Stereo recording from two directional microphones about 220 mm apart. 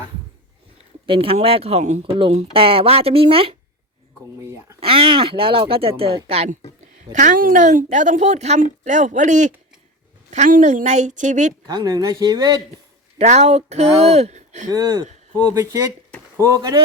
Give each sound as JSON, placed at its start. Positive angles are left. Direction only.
{"t": 1.0, "sound": "speech", "side_deg": -25}
{"t": 4.4, "sound": "a sound", "side_deg": -10}
{"t": 4.8, "sound": "a woman's voice", "side_deg": -25}
{"t": 11.7, "sound": "speech", "side_deg": -20}
{"t": 13.1, "sound": "a woman's voice", "side_deg": -30}
{"t": 14.7, "sound": "speech", "side_deg": -15}